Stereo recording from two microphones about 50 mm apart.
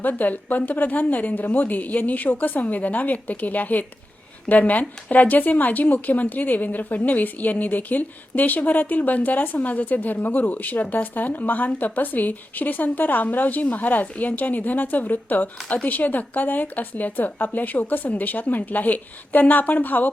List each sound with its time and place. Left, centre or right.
0.0 s speech: left